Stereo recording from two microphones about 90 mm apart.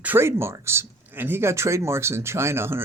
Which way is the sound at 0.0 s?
25° right (ahead or behind).